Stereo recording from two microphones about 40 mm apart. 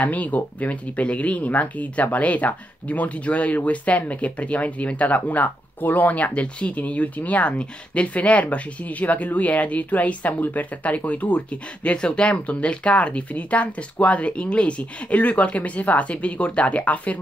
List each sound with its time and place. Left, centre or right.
0.0 s speech: left